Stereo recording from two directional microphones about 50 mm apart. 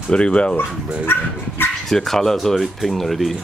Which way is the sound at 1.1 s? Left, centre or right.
Left.